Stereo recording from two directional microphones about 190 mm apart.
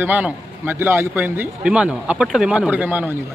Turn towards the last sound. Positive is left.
turn(degrees=-10)  # may be behind; listen again after turning